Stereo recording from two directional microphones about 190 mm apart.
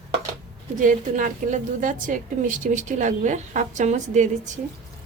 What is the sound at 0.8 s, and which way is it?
A woman's voice, 40° right (ahead or behind).